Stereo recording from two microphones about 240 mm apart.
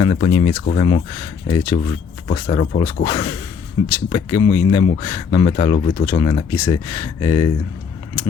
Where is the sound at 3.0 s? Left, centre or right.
Centre.